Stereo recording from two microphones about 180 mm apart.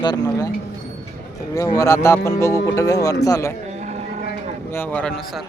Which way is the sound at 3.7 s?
40° right (ahead or behind).